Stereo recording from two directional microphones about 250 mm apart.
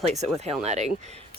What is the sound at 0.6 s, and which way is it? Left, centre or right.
Speech, right.